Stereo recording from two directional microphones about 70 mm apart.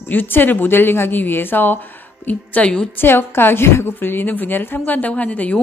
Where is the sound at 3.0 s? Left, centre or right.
Left.